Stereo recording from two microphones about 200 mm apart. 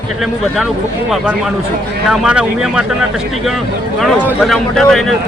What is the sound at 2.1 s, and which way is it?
Speech, 5° right (ahead or behind).